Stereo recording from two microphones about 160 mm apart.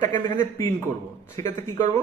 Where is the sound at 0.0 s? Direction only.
15° left (ahead or behind).